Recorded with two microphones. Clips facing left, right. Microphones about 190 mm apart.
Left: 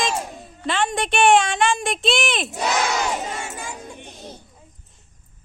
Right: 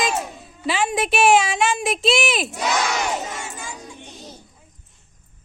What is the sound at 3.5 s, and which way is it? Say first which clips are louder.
Music: left 2 dB; 60° left (ahead or behind).